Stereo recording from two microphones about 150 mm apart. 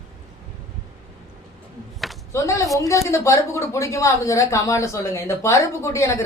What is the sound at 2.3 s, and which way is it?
Speech, 20° left (ahead or behind).